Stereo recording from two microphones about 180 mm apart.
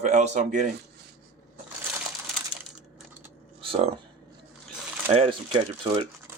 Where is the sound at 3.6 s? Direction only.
30° right (ahead or behind).